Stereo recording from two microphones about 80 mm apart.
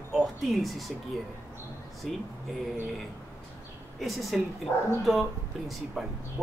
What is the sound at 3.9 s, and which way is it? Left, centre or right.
Speech, centre.